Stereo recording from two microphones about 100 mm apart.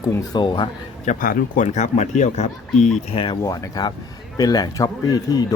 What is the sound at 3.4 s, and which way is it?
A man's voice, 35° left (ahead or behind).